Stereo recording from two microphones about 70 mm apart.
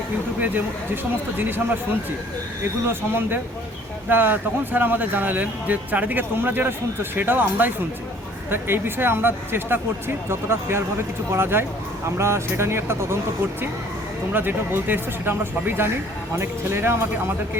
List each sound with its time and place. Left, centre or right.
0.3 s speech: right
2.8 s speech: right
14.3 s speech: right